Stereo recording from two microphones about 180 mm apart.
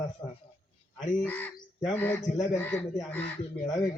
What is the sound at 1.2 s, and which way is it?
Speech, 10° left (ahead or behind).